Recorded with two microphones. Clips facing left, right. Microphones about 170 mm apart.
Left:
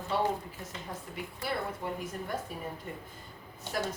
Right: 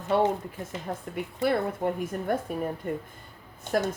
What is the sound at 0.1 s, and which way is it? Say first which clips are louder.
Speech: right 7 dB; 55° right (ahead or behind).